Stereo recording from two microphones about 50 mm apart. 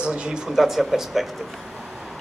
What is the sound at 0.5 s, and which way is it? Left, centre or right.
Speech, centre.